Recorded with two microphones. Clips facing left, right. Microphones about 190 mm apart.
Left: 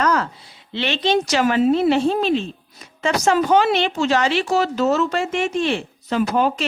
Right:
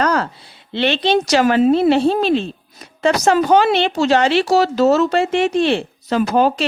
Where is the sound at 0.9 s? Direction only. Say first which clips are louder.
Right 3 dB; 35° right (ahead or behind).